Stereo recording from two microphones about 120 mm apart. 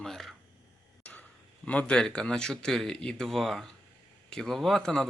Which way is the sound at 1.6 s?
10° left (ahead or behind).